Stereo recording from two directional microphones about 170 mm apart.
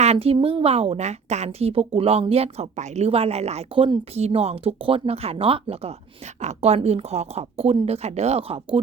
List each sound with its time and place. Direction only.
0.0 s a woman's voice: 35° right (ahead or behind)